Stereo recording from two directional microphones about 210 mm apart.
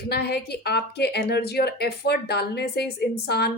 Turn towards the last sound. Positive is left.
turn(degrees=50)  # may be behind; listen again after turning